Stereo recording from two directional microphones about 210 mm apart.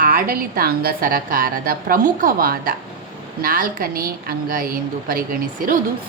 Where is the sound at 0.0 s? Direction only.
40° right (ahead or behind).